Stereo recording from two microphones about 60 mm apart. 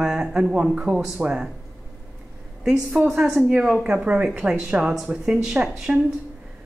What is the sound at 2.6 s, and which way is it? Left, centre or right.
Speech, centre.